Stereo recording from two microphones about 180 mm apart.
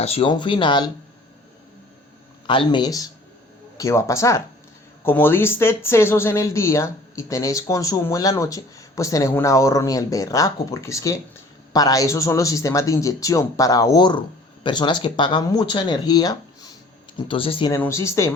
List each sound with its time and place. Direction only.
0.0 s speech: 35° left (ahead or behind)
2.5 s speech: 25° left (ahead or behind)
17.7 s speech: 15° left (ahead or behind)